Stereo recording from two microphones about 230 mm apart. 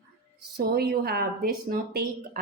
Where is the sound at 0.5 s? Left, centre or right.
Right.